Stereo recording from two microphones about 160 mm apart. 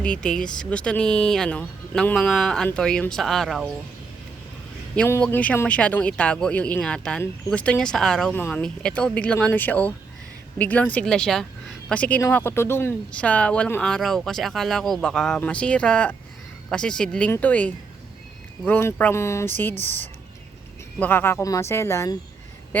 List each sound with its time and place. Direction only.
0.0 s speech: 5° left (ahead or behind)
4.9 s speech: 10° left (ahead or behind)
21.0 s speech: 15° left (ahead or behind)